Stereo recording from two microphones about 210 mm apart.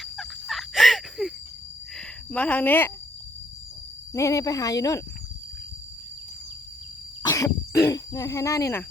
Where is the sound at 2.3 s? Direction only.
5° left (ahead or behind).